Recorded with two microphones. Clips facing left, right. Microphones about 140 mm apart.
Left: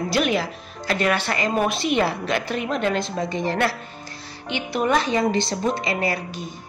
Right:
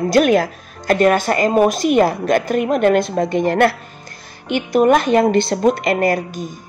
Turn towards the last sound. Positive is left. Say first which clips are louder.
# right 8 dB
turn(degrees=-45)  # may be behind; listen again after turning